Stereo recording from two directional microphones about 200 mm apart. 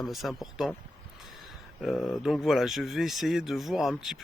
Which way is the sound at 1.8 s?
Centre (ahead or behind).